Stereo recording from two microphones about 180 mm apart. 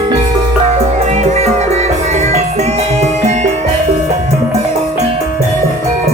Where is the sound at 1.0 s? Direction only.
40° right (ahead or behind).